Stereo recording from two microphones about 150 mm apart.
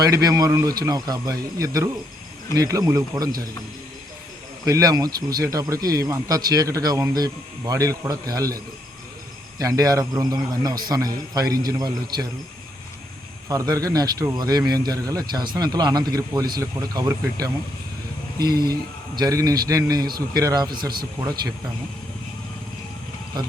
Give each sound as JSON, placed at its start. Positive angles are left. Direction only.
{"t": 0.0, "sound": "speech", "side_deg": -25}
{"t": 4.6, "sound": "speech", "side_deg": -25}
{"t": 13.5, "sound": "speech", "side_deg": -25}